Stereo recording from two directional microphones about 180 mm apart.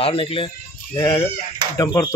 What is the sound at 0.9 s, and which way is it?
Speech, 20° left (ahead or behind).